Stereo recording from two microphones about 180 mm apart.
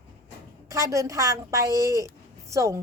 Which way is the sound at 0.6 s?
15° right (ahead or behind).